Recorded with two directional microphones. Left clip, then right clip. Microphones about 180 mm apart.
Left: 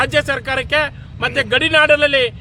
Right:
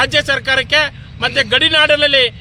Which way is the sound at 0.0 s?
10° left (ahead or behind).